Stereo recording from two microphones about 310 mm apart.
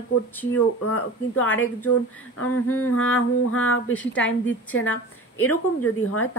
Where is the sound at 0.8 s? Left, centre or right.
Left.